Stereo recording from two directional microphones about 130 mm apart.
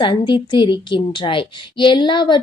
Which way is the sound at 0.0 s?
40° left (ahead or behind).